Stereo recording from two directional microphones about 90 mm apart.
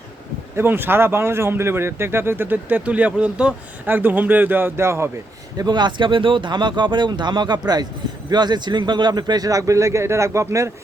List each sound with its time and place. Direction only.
0.5 s speech: 25° right (ahead or behind)
5.5 s speech: 55° right (ahead or behind); by 10.7 s 35° right (ahead or behind)